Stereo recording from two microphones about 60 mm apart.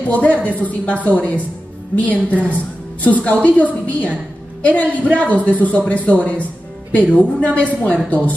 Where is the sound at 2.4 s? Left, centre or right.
Left.